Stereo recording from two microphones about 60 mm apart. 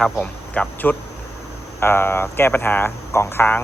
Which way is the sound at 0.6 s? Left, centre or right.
Left.